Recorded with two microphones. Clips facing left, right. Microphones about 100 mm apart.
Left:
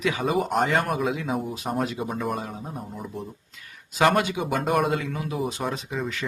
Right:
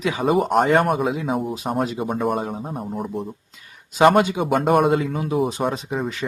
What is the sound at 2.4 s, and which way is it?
Speech, 40° right (ahead or behind).